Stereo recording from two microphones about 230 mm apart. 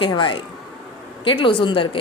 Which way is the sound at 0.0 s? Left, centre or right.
Left.